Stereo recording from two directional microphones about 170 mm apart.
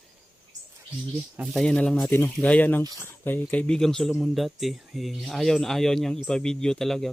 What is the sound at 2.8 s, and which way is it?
Speech, 20° right (ahead or behind).